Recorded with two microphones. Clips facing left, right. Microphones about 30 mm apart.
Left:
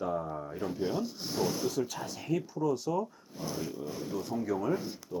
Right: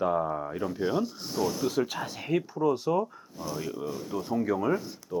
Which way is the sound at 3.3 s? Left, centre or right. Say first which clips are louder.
Right 2 dB; centre.